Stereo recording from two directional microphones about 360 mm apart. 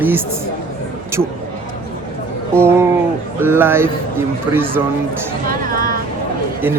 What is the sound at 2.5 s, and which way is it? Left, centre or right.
Speech, centre.